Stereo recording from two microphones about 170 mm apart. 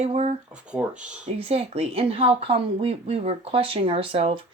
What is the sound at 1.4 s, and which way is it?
Speech, 35° right (ahead or behind).